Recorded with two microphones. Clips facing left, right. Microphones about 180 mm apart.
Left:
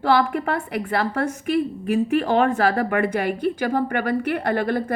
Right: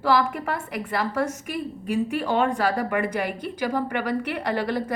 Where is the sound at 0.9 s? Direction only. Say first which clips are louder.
Left 1 dB; 60° left (ahead or behind).